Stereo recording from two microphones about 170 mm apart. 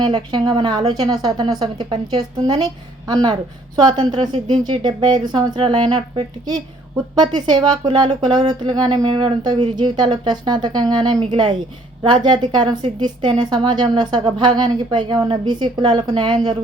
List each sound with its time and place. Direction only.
0.0 s speech: 25° right (ahead or behind)
12.2 s speech: 25° right (ahead or behind)